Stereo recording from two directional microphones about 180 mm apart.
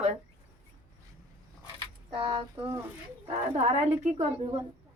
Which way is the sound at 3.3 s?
35° right (ahead or behind).